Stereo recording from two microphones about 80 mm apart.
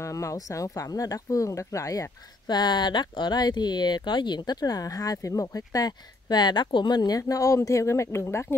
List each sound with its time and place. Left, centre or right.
0.0 s speech: left